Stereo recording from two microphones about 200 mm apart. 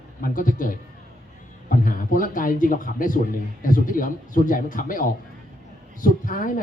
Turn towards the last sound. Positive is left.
turn(degrees=40)  # may be behind; listen again after turning